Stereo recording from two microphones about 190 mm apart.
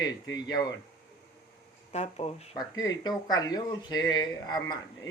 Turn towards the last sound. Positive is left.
turn(degrees=20)  # may be behind; listen again after turning